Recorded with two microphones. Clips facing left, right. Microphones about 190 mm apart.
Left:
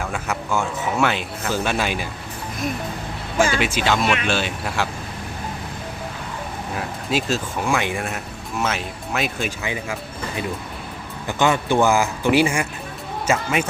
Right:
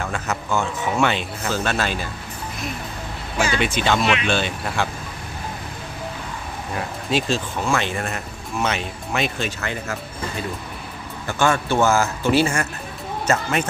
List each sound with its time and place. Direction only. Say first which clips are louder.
0.0 s speech: even; 5° left (ahead or behind)
3.3 s speech: left 3 dB; 50° left (ahead or behind)
3.6 s speech: even; 5° left (ahead or behind)
6.7 s speech: right 1 dB; 5° left (ahead or behind)
11.3 s speech: left 1 dB; 20° left (ahead or behind)